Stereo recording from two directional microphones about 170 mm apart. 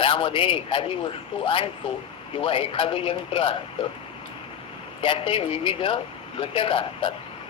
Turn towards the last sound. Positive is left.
turn(degrees=30)  # may be behind; listen again after turning